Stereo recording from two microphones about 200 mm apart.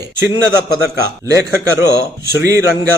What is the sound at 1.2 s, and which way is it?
Speech, 15° right (ahead or behind).